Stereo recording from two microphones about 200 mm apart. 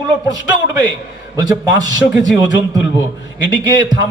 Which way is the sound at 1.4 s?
20° right (ahead or behind).